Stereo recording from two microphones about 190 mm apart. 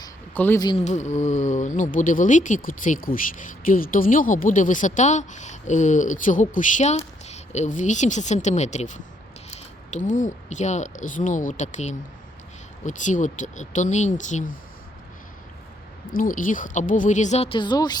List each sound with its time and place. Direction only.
0.3 s speech: 10° left (ahead or behind)
0.9 s speech: 40° left (ahead or behind)
16.1 s speech: 45° left (ahead or behind); by 17.9 s 20° left (ahead or behind)